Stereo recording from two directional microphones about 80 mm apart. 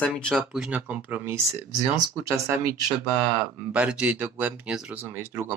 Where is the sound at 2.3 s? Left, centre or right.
Right.